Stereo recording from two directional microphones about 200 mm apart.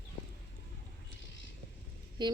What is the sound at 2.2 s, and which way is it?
Speech, 20° right (ahead or behind).